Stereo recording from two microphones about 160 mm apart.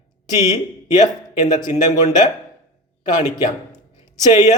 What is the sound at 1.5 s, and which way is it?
Speech, 25° left (ahead or behind).